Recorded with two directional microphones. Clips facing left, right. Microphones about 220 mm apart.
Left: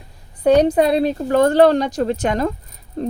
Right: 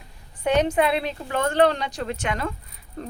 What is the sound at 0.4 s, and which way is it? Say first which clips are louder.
Speech: left 7 dB; 35° left (ahead or behind).